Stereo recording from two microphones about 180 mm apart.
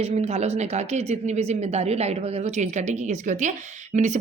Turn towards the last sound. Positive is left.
turn(degrees=-40)  # may be behind; listen again after turning